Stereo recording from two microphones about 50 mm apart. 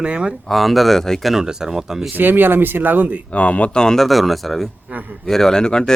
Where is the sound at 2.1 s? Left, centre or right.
Right.